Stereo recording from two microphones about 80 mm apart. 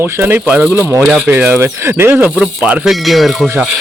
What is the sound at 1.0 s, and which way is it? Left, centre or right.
Speech, centre.